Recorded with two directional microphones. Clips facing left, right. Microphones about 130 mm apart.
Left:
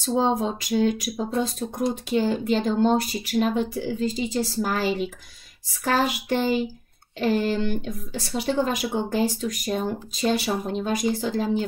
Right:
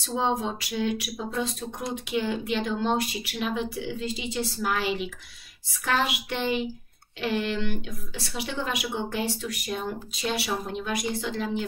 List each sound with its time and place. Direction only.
0.0 s a woman's voice: 40° left (ahead or behind)